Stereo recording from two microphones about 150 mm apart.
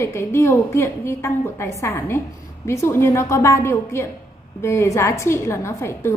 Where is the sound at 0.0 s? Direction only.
15° left (ahead or behind).